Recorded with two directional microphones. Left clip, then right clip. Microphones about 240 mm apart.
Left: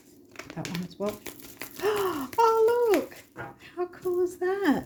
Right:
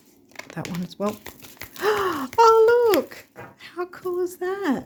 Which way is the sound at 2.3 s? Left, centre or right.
Right.